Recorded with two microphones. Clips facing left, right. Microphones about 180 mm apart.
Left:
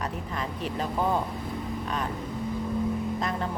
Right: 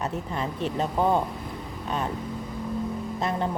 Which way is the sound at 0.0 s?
25° right (ahead or behind).